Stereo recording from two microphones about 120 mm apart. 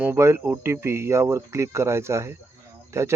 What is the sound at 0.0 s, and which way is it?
Speech, 20° right (ahead or behind).